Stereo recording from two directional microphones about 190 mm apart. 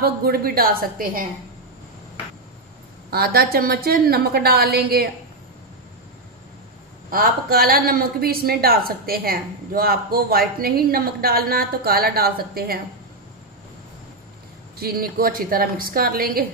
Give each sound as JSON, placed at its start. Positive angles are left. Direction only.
{"t": 0.0, "sound": "a woman's voice", "side_deg": -55}
{"t": 3.1, "sound": "a woman's voice", "side_deg": -55}
{"t": 7.1, "sound": "a woman's voice", "side_deg": -50}
{"t": 14.8, "sound": "a woman's voice", "side_deg": -50}